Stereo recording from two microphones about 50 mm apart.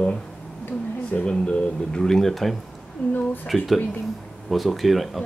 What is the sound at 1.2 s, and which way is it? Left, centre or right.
Speech, centre.